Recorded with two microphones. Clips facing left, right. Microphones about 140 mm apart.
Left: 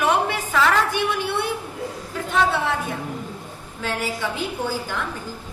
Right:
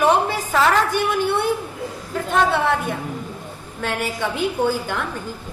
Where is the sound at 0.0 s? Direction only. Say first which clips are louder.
Right 3 dB; 35° right (ahead or behind).